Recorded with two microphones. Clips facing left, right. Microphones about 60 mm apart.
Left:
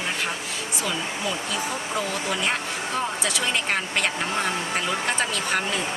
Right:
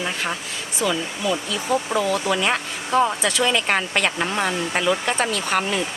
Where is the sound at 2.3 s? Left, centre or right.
Right.